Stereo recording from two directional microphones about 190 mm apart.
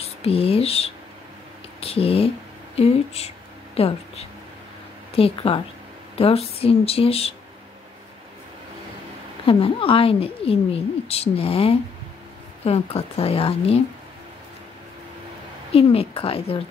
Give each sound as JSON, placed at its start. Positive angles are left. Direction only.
{"t": 0.0, "sound": "a woman's voice", "side_deg": 30}
{"t": 9.5, "sound": "a woman's voice", "side_deg": 30}
{"t": 15.7, "sound": "a woman's voice", "side_deg": 30}